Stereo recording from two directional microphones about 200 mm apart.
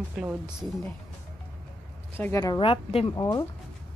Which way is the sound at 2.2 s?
15° left (ahead or behind).